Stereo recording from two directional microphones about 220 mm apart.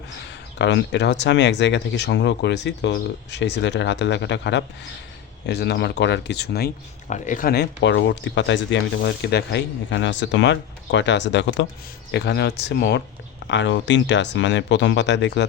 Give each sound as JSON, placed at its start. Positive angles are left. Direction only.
{"t": 0.3, "sound": "speech", "side_deg": 50}
{"t": 7.1, "sound": "speech", "side_deg": 35}